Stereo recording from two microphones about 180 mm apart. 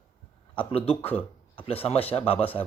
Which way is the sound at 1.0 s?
10° left (ahead or behind).